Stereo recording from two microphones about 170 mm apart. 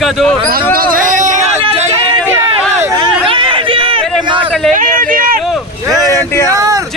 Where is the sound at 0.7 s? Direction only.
55° right (ahead or behind); by 1.8 s 35° right (ahead or behind).